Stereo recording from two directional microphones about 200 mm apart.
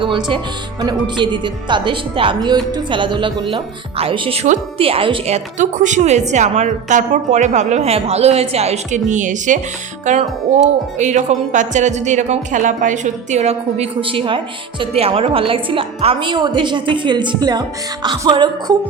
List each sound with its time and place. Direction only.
0.0 s a woman's voice: 25° right (ahead or behind)